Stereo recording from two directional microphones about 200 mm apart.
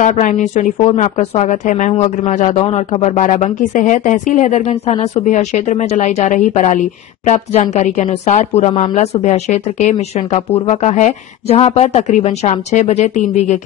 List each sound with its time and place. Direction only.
0.0 s a woman's voice: 40° left (ahead or behind)